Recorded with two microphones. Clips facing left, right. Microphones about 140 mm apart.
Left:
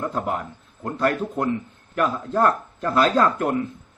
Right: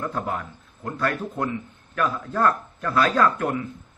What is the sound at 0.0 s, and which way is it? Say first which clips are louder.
Speech: left 2 dB; 20° left (ahead or behind).